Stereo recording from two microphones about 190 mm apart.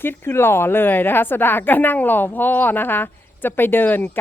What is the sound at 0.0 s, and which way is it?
A woman's voice, 10° left (ahead or behind).